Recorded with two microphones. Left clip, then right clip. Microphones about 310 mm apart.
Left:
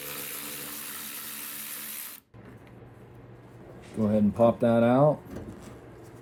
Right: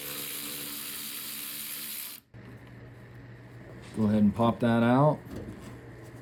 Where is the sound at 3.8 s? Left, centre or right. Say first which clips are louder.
Left 2 dB; centre.